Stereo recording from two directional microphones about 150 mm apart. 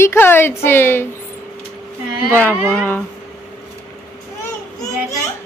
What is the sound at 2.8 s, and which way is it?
Speech, 10° left (ahead or behind).